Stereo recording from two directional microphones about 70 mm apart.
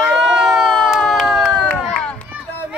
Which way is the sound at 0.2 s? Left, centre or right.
Centre.